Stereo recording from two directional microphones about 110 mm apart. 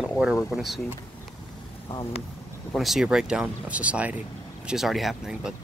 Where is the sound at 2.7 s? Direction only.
5° right (ahead or behind).